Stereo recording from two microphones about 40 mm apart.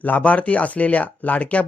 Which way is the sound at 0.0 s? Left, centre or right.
Left.